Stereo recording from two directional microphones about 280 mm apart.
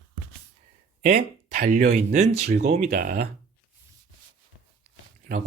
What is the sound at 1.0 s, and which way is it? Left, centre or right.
Speech, right.